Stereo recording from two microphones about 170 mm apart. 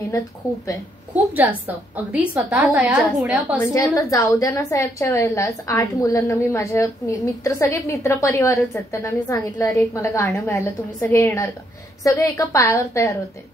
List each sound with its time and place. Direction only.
1.1 s a woman's voice: 10° right (ahead or behind)
3.5 s a woman's voice: 20° left (ahead or behind)